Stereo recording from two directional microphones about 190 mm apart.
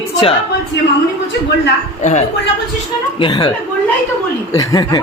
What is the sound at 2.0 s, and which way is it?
Speech, 40° left (ahead or behind).